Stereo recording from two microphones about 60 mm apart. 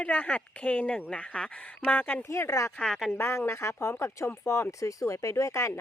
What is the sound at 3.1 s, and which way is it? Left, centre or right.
Speech, left.